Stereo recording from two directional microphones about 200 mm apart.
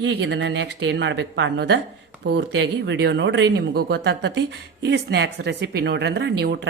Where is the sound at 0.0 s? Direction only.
65° right (ahead or behind).